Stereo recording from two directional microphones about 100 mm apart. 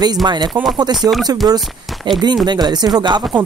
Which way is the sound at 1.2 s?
40° right (ahead or behind).